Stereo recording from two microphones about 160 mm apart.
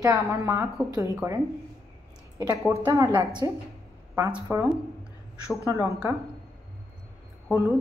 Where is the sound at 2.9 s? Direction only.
20° right (ahead or behind).